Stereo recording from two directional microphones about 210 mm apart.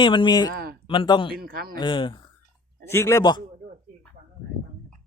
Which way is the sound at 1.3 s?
45° right (ahead or behind).